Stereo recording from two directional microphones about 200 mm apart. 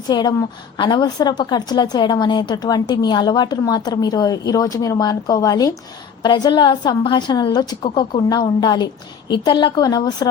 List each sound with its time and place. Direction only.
0.1 s a woman's voice: 20° left (ahead or behind)